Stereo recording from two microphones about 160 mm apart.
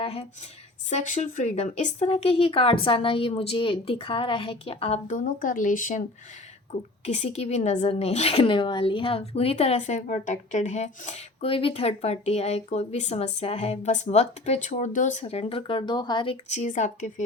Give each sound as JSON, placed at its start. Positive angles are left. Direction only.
{"t": 0.0, "sound": "speech", "side_deg": 40}
{"t": 0.9, "sound": "a woman's voice", "side_deg": 50}
{"t": 7.0, "sound": "a woman's voice", "side_deg": 45}
{"t": 15.2, "sound": "a woman's voice", "side_deg": 35}